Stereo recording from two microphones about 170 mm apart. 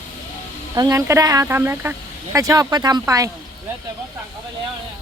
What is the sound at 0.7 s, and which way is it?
Speech, 20° right (ahead or behind).